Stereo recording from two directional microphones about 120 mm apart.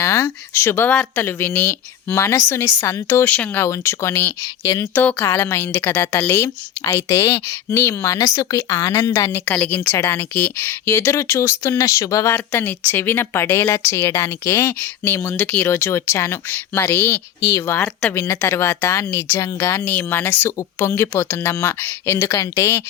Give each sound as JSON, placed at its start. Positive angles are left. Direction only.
{"t": 0.0, "sound": "speech", "side_deg": 25}
{"t": 0.9, "sound": "speech", "side_deg": 10}
{"t": 4.9, "sound": "a woman's voice", "side_deg": 15}